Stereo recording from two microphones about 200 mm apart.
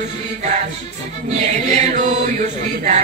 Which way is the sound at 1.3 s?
35° right (ahead or behind).